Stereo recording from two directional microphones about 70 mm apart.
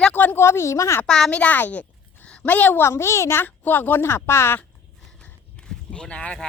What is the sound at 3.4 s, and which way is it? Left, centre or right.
A woman's voice, left.